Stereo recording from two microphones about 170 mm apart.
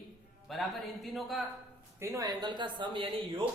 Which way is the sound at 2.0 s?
20° right (ahead or behind).